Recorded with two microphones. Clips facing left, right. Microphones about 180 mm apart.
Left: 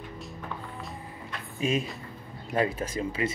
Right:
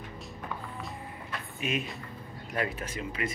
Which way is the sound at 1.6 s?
30° left (ahead or behind).